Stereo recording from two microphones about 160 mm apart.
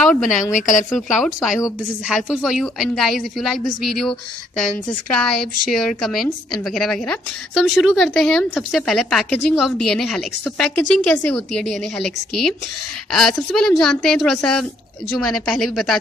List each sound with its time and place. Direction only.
0.0 s speech: centre (ahead or behind)
0.4 s speech: 50° left (ahead or behind)
0.8 s a woman's voice: centre (ahead or behind)